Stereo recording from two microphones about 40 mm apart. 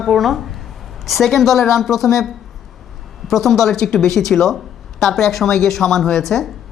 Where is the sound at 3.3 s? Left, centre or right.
Centre.